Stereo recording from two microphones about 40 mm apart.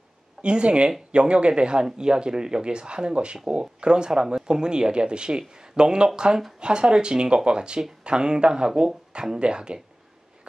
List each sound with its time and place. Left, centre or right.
0.4 s speech: right